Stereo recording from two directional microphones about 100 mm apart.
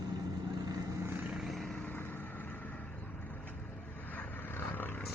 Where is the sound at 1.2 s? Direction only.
5° right (ahead or behind).